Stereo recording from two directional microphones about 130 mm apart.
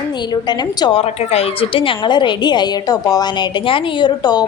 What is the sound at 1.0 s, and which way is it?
A woman's voice, 50° left (ahead or behind).